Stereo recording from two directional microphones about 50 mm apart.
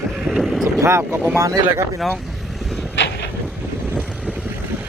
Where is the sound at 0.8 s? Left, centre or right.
Right.